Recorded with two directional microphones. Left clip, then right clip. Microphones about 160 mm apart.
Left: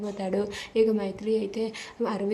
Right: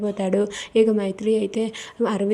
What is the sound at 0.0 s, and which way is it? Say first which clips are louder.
Speech: right 7 dB; 30° right (ahead or behind).